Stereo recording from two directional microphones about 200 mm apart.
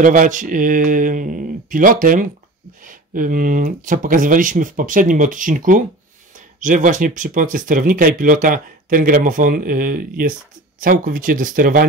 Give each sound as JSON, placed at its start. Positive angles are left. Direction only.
{"t": 0.0, "sound": "speech", "side_deg": -40}